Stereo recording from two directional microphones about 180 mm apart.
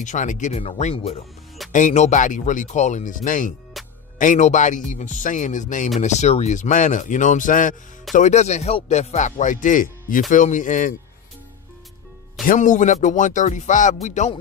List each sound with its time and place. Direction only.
0.0 s speech: 45° left (ahead or behind)
3.8 s music: centre (ahead or behind)
4.2 s speech: 45° left (ahead or behind)
12.4 s speech: 45° left (ahead or behind)